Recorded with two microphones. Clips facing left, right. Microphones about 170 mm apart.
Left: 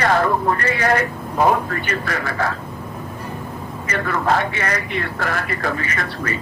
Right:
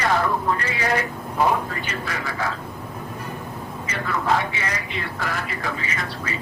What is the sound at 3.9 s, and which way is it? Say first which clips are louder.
A man's voice: left 3 dB; 55° left (ahead or behind).